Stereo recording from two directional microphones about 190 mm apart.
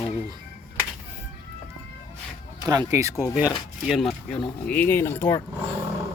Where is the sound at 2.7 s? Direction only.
20° right (ahead or behind).